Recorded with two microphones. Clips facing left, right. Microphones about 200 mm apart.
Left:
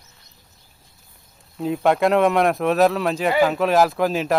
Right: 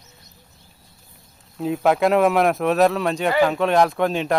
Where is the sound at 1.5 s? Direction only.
Centre (ahead or behind).